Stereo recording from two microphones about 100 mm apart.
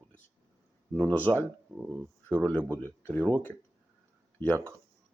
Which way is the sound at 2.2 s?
20° right (ahead or behind).